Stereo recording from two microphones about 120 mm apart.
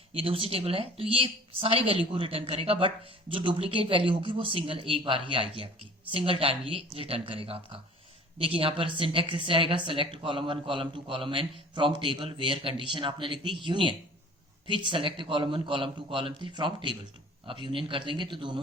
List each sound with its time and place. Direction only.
0.1 s speech: 50° right (ahead or behind)